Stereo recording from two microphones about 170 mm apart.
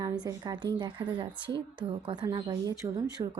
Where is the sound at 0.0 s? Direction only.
25° right (ahead or behind).